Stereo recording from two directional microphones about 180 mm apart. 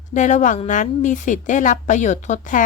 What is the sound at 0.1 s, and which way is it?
A woman's voice, 45° left (ahead or behind).